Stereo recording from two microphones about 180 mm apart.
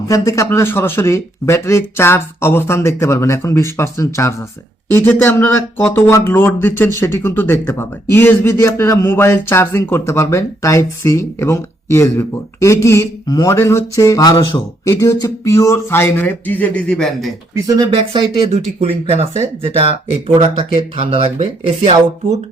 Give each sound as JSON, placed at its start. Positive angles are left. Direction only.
{"t": 0.1, "sound": "speech", "side_deg": 15}
{"t": 17.5, "sound": "speech", "side_deg": -20}
{"t": 17.9, "sound": "speech", "side_deg": -35}